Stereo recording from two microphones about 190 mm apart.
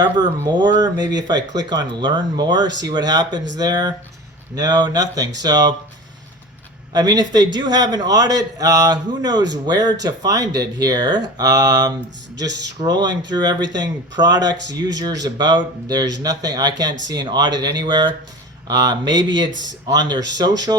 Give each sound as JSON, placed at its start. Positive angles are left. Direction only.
{"t": 0.0, "sound": "a man's voice", "side_deg": -20}
{"t": 6.9, "sound": "a man's voice", "side_deg": -20}